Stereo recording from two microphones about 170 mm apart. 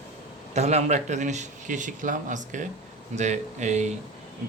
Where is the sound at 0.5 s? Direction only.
40° right (ahead or behind).